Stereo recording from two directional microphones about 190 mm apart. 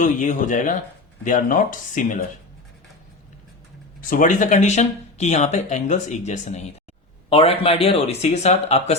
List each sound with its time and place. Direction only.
0.0 s speech: 40° left (ahead or behind)
4.1 s speech: 45° left (ahead or behind)